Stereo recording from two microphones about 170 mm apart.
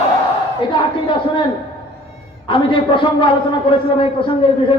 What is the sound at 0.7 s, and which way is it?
Speech, 30° left (ahead or behind).